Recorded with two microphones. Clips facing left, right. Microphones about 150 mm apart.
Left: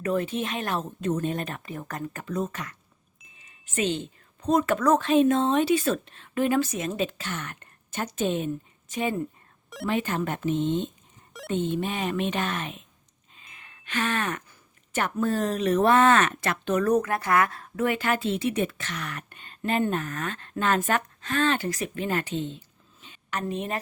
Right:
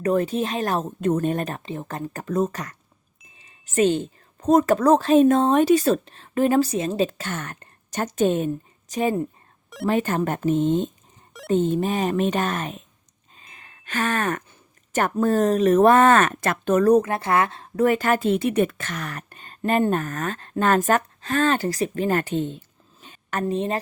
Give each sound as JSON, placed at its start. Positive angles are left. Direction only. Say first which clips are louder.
{"t": 0.0, "sound": "speech", "louder": "right 5 dB", "side_deg": -40}
{"t": 1.6, "sound": "speech", "louder": "right 4 dB", "side_deg": -25}
{"t": 2.2, "sound": "a woman's voice", "louder": "right 8 dB", "side_deg": -45}
{"t": 13.3, "sound": "wind chime", "louder": "right 3 dB", "side_deg": -40}
{"t": 14.9, "sound": "speech", "louder": "right 6 dB", "side_deg": -45}
{"t": 16.9, "sound": "speech", "louder": "right 4 dB", "side_deg": -30}
{"t": 17.8, "sound": "speech", "louder": "right 6 dB", "side_deg": -45}
{"t": 23.6, "sound": "speech", "louder": "right 7 dB", "side_deg": -30}